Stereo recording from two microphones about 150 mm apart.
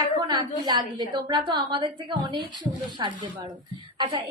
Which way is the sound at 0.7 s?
30° right (ahead or behind).